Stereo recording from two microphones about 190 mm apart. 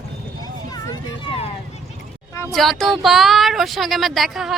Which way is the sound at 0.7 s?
25° left (ahead or behind).